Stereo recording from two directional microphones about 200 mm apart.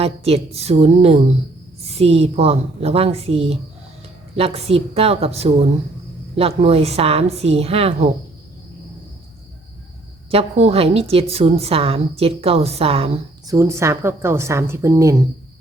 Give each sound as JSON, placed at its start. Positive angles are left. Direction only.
{"t": 0.0, "sound": "a woman's voice", "side_deg": -30}
{"t": 10.3, "sound": "a woman's voice", "side_deg": -30}
{"t": 13.5, "sound": "a woman's voice", "side_deg": -15}